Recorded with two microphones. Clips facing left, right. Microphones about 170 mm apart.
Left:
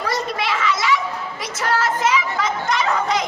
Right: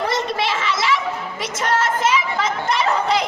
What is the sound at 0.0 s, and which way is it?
Children playing, 25° right (ahead or behind).